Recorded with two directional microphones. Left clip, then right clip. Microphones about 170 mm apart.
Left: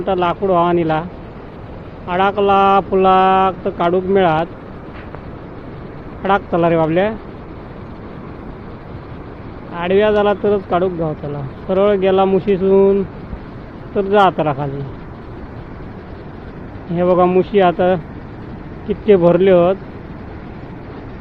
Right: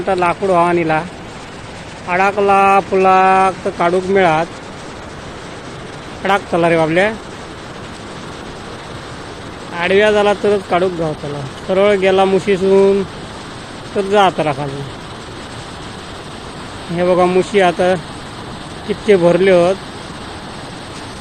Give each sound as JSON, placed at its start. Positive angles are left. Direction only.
{"t": 0.0, "sound": "speech", "side_deg": -10}
{"t": 2.0, "sound": "speech", "side_deg": -5}
{"t": 6.2, "sound": "speech", "side_deg": -15}
{"t": 9.7, "sound": "speech", "side_deg": -15}
{"t": 17.0, "sound": "speech", "side_deg": -15}